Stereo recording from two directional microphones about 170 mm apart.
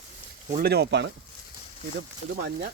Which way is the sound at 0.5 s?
70° right (ahead or behind).